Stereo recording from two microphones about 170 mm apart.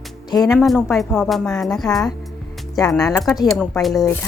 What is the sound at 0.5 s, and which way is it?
Speech, centre (ahead or behind).